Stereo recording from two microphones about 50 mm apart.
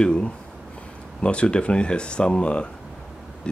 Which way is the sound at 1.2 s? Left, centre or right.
Left.